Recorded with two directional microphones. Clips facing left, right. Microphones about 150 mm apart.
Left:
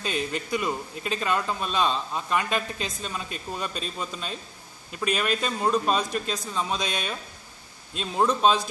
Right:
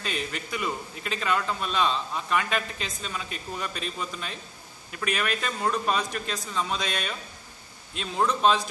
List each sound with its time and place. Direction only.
0.5 s a man's voice: 25° left (ahead or behind)